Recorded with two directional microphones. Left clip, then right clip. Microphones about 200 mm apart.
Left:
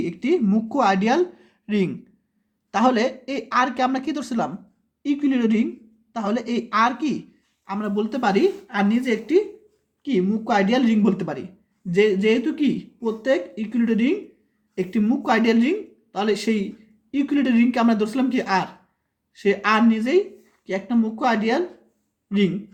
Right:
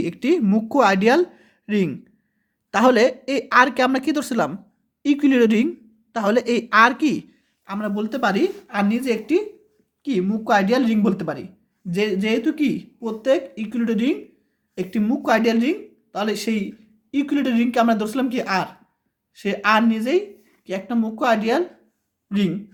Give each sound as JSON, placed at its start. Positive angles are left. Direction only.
{"t": 0.0, "sound": "speech", "side_deg": -35}